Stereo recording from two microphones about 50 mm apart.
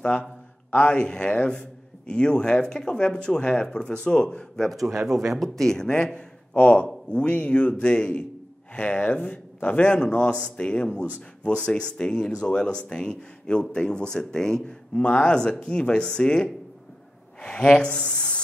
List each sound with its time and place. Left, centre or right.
0.0 s a man's voice: left
4.8 s speech: centre
5.6 s a man's voice: centre
6.5 s a man's voice: left